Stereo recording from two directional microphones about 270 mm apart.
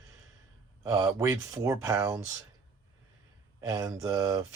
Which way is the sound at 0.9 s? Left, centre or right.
Centre.